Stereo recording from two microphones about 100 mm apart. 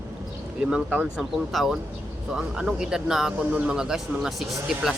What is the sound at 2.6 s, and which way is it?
Speech, 5° right (ahead or behind).